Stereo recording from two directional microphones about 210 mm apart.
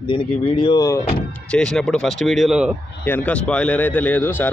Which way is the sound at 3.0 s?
10° left (ahead or behind).